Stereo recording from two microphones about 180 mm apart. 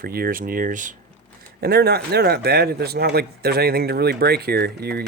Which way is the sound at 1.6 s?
60° right (ahead or behind).